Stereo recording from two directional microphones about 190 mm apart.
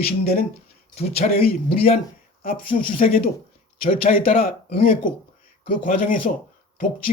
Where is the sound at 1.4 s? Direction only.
55° left (ahead or behind).